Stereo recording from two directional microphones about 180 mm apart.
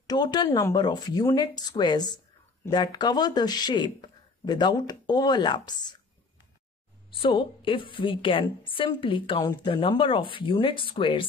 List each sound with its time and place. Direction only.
0.0 s a woman's voice: 20° left (ahead or behind)
7.2 s a woman's voice: 30° left (ahead or behind)